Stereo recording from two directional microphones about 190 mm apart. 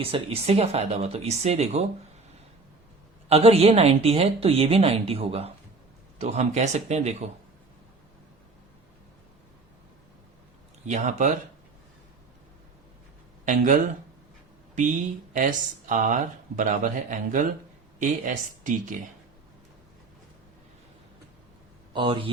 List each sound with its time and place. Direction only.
0.0 s speech: 30° right (ahead or behind)
3.2 s speech: 30° right (ahead or behind)
10.8 s speech: 40° right (ahead or behind)
13.4 s speech: 40° right (ahead or behind)
21.9 s speech: 25° right (ahead or behind)